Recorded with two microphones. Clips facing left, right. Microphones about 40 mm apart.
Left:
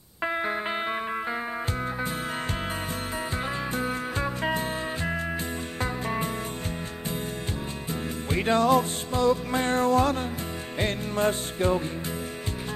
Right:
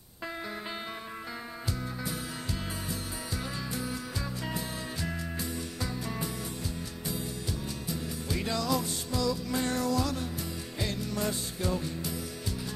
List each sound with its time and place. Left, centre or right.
3.7 s music: left
7.9 s music: left